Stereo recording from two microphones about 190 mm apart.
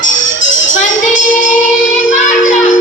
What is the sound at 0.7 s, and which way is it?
Child singing, 40° left (ahead or behind).